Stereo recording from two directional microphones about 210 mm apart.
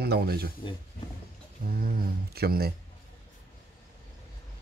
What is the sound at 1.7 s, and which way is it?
Speech, 45° right (ahead or behind).